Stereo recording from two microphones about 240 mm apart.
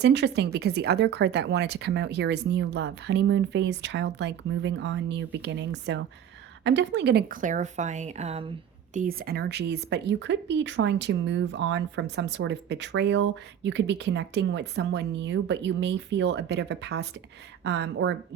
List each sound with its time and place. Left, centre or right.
0.0 s a woman's voice: right